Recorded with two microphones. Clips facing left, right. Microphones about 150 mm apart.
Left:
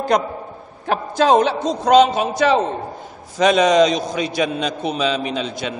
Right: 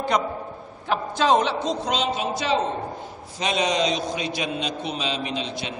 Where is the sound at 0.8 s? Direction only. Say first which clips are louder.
Left 5 dB; 45° left (ahead or behind).